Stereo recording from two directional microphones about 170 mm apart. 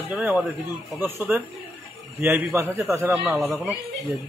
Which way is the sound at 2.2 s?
10° right (ahead or behind).